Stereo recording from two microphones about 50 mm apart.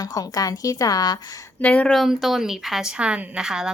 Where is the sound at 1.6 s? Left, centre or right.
Left.